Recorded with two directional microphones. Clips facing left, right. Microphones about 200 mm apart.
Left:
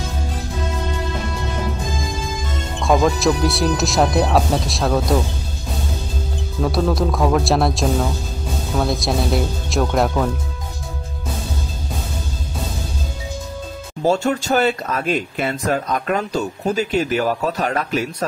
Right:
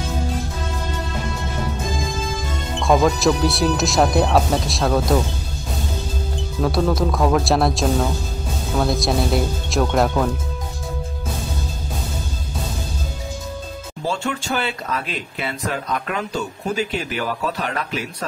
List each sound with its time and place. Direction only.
2.8 s speech: centre (ahead or behind)
6.6 s speech: centre (ahead or behind)
14.0 s speech: 40° left (ahead or behind)